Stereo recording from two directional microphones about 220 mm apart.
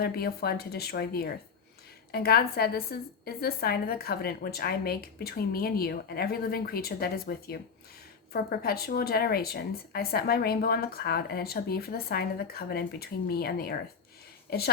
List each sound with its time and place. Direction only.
0.0 s a woman's voice: 45° left (ahead or behind)